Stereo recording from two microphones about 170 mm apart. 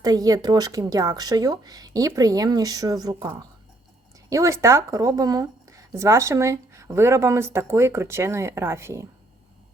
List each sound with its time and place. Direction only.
0.0 s a woman's voice: 20° right (ahead or behind)